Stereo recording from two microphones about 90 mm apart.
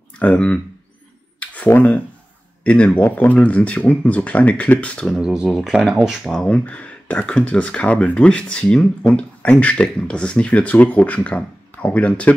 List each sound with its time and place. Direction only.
0.2 s speech: 15° left (ahead or behind)
1.4 s a sound: 15° left (ahead or behind)
2.6 s speech: 15° left (ahead or behind)
5.2 s speech: 10° right (ahead or behind); by 12.4 s 15° left (ahead or behind)